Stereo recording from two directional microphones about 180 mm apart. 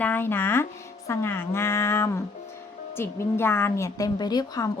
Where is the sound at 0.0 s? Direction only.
10° left (ahead or behind).